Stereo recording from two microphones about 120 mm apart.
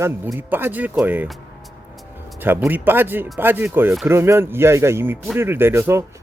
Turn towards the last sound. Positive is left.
turn(degrees=-20)  # may be behind; listen again after turning